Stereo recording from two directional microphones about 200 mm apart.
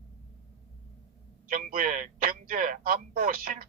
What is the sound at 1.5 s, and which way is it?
Speech, 45° right (ahead or behind).